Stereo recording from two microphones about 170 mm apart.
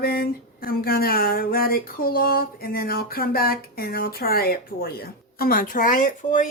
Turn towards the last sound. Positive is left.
turn(degrees=50)  # may be behind; listen again after turning